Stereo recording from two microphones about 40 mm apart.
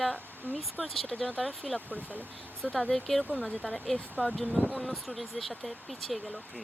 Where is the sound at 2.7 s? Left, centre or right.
Centre.